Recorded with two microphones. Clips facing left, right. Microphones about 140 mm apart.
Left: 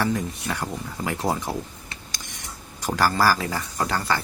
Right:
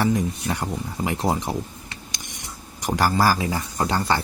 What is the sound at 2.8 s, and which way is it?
Speech, 20° right (ahead or behind).